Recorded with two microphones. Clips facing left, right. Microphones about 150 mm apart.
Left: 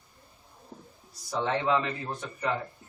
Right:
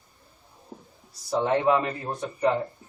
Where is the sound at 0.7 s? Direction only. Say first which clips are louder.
Right 3 dB; 5° right (ahead or behind).